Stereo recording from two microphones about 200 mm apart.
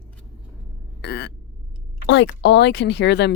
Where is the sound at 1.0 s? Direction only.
55° left (ahead or behind).